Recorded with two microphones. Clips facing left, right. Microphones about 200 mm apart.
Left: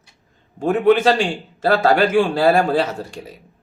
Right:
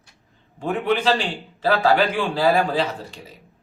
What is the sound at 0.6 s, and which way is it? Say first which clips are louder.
Speech: left 7 dB; 45° left (ahead or behind).